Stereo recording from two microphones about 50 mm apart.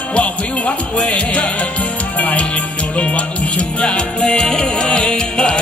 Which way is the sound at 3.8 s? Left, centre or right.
Centre.